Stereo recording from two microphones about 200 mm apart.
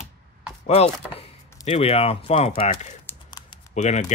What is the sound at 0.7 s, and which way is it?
Speech, 30° left (ahead or behind).